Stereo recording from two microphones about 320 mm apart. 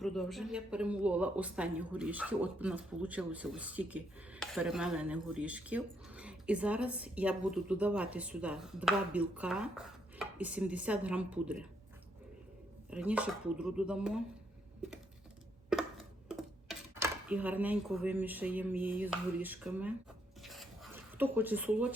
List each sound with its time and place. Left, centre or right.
0.0 s speech: centre
12.9 s speech: centre
15.7 s speech: centre
20.4 s a sound: centre